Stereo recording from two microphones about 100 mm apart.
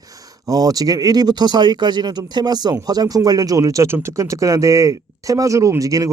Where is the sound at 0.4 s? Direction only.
40° right (ahead or behind).